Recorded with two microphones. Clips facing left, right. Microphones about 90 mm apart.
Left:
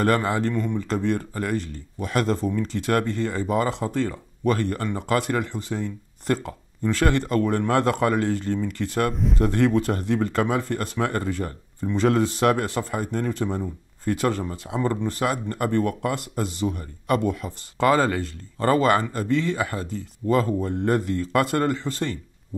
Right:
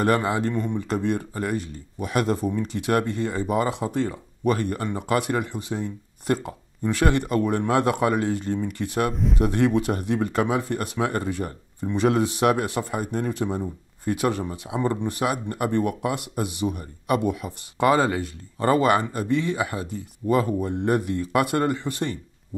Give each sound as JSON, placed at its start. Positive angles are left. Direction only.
{"t": 0.0, "sound": "speech", "side_deg": -15}
{"t": 9.1, "sound": "speech", "side_deg": 0}
{"t": 9.4, "sound": "speech", "side_deg": -15}